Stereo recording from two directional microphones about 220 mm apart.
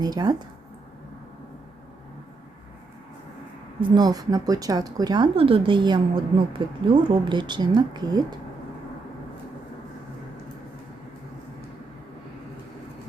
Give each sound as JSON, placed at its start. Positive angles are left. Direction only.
{"t": 0.0, "sound": "speech", "side_deg": -20}
{"t": 3.8, "sound": "speech", "side_deg": -20}